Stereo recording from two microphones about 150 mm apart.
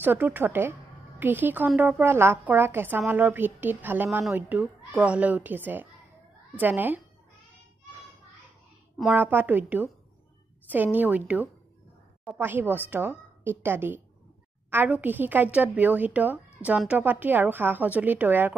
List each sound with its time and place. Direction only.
0.0 s a woman's voice: 15° right (ahead or behind)
9.1 s a woman's voice: 15° right (ahead or behind)